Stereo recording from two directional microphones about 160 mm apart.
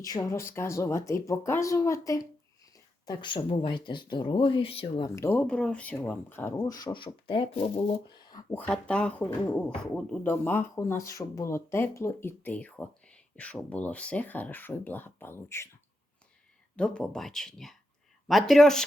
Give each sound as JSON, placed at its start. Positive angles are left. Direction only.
{"t": 0.0, "sound": "speech", "side_deg": 25}
{"t": 5.0, "sound": "speech", "side_deg": 15}
{"t": 8.3, "sound": "a sound", "side_deg": 25}
{"t": 8.5, "sound": "speech", "side_deg": 5}
{"t": 16.7, "sound": "speech", "side_deg": 5}